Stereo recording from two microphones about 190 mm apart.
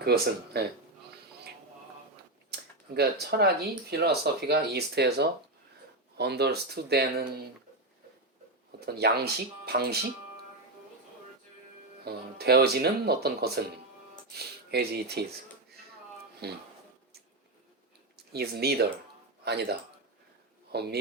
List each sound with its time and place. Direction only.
0.0 s speech: 55° right (ahead or behind)
2.5 s a sound: 60° right (ahead or behind)
3.9 s speech: 55° right (ahead or behind)
8.9 s speech: 55° right (ahead or behind)
12.0 s speech: 55° right (ahead or behind)
16.4 s speech: 60° right (ahead or behind)
18.3 s speech: 60° right (ahead or behind)
20.7 s speech: 60° right (ahead or behind)